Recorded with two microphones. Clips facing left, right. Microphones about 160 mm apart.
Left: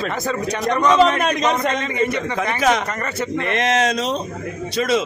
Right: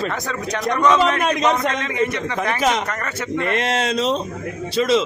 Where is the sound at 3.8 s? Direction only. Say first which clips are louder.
Even; 45° left (ahead or behind).